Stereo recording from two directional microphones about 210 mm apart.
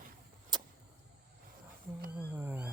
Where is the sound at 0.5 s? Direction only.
20° right (ahead or behind).